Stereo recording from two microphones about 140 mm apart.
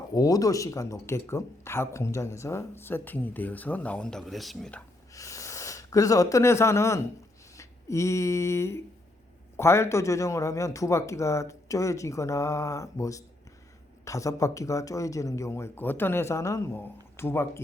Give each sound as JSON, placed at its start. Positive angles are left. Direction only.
{"t": 0.1, "sound": "speech", "side_deg": 25}
{"t": 5.1, "sound": "speech", "side_deg": 25}
{"t": 7.5, "sound": "a sound", "side_deg": 20}
{"t": 9.6, "sound": "speech", "side_deg": 20}